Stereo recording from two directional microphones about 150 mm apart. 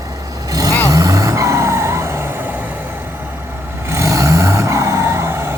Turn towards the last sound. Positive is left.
turn(degrees=-15)  # may be behind; listen again after turning